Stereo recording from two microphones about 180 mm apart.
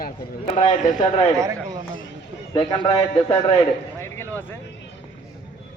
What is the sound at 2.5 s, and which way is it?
Speech, 20° left (ahead or behind).